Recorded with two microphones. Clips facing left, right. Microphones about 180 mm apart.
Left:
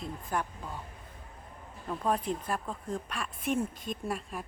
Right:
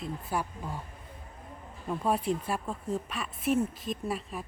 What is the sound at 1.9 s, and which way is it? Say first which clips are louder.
A woman's voice: right 2 dB; 10° right (ahead or behind).